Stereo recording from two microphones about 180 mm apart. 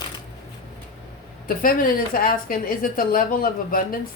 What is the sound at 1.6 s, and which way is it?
Speech, 50° left (ahead or behind).